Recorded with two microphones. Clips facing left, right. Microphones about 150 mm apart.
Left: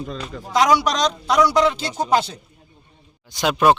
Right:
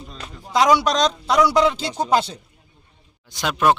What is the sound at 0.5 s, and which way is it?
Speech, centre (ahead or behind).